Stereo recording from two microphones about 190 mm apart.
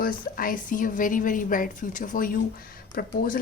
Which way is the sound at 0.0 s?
50° left (ahead or behind).